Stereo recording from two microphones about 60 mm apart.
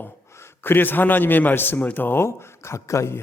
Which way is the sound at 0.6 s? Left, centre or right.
Left.